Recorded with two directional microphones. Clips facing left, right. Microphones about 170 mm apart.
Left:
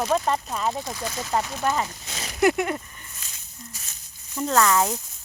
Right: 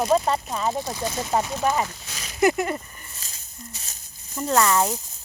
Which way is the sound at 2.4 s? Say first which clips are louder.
Even; centre (ahead or behind).